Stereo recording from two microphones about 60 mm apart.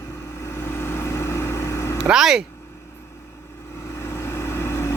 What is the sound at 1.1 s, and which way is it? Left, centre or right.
Vehicle, left.